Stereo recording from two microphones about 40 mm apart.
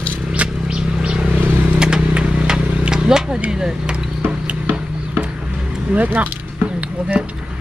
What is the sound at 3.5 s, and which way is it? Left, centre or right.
Speech, centre.